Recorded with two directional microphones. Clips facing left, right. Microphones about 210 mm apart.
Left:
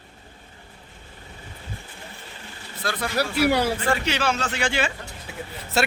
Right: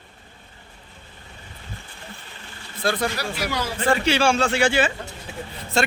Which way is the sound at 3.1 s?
60° left (ahead or behind).